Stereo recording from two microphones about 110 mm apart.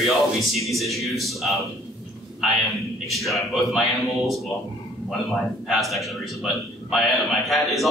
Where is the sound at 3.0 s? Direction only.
Centre (ahead or behind).